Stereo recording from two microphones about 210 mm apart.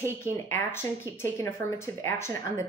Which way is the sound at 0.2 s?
10° left (ahead or behind).